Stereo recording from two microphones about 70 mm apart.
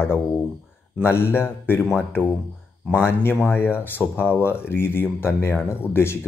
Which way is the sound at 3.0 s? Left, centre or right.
Left.